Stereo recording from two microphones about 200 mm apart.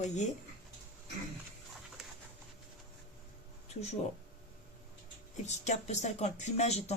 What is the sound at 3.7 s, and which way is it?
Speech, 35° left (ahead or behind).